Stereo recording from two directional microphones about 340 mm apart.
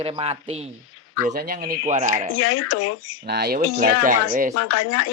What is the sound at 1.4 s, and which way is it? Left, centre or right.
Speech, right.